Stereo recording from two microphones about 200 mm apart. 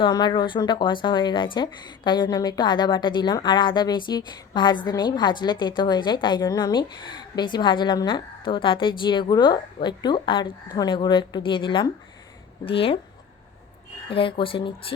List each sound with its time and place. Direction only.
0.0 s a woman's voice: 20° left (ahead or behind)
14.1 s a woman's voice: 25° left (ahead or behind)